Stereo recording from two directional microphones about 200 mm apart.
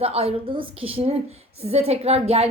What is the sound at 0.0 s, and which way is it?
A woman's voice, 30° right (ahead or behind).